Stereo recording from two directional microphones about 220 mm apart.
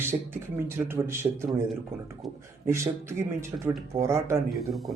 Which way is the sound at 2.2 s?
Centre (ahead or behind).